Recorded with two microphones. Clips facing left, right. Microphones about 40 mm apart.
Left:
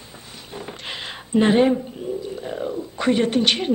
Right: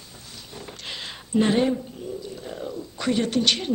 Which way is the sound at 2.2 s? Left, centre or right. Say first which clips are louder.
Left 6 dB; left.